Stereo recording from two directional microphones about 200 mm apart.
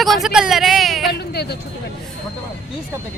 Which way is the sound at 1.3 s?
55° left (ahead or behind).